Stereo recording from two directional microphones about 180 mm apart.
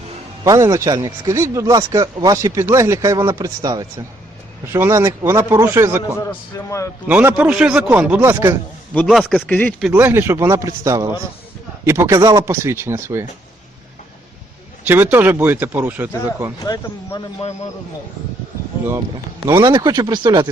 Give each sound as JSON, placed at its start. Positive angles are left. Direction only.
{"t": 0.4, "sound": "a man's voice", "side_deg": -20}
{"t": 6.7, "sound": "speech", "side_deg": 15}
{"t": 7.1, "sound": "a man's voice", "side_deg": -10}
{"t": 8.9, "sound": "speech", "side_deg": 5}
{"t": 9.9, "sound": "a man's voice", "side_deg": -15}
{"t": 14.8, "sound": "a man's voice", "side_deg": -10}
{"t": 16.6, "sound": "speech", "side_deg": 20}
{"t": 19.5, "sound": "speech", "side_deg": -20}